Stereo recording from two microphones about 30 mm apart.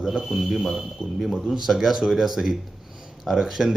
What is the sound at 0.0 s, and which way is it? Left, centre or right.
Speech, centre.